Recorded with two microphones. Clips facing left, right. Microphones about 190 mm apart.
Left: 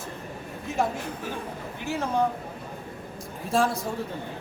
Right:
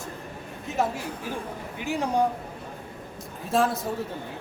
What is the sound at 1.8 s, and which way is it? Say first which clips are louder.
Speech: right 2 dB; 15° right (ahead or behind).